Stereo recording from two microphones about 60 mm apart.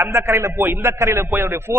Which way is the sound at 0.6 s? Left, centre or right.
Right.